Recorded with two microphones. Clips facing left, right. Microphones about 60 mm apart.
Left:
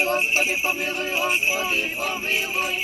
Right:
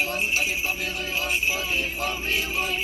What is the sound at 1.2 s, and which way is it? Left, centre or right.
Jingle bell, left.